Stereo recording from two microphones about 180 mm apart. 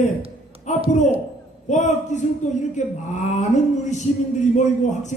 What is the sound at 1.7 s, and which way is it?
A man's voice, 40° left (ahead or behind).